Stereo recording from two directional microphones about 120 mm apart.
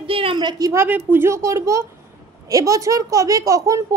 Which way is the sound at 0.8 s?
20° right (ahead or behind).